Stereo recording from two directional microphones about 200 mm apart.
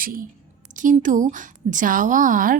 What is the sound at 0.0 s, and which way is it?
A woman's voice, 45° right (ahead or behind).